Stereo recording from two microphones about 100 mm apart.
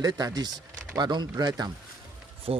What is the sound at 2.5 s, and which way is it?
Speech, 75° right (ahead or behind).